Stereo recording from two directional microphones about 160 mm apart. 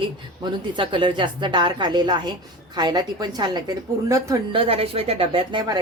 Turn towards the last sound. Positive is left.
turn(degrees=-30)  # may be behind; listen again after turning